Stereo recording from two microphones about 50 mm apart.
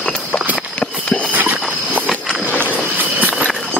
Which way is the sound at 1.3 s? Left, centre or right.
Right.